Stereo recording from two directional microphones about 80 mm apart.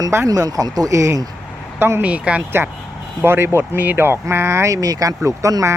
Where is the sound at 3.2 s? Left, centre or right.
Right.